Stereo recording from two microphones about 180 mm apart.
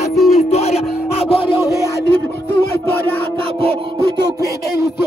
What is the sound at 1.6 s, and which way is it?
Music, 15° right (ahead or behind).